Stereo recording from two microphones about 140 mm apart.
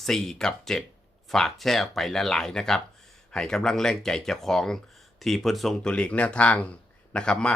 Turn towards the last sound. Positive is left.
turn(degrees=5)  # may be behind; listen again after turning